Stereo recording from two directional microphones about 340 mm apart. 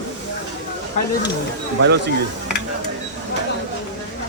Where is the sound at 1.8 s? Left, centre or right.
Right.